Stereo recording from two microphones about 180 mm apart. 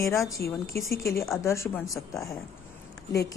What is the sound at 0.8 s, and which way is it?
A woman's voice, 15° left (ahead or behind).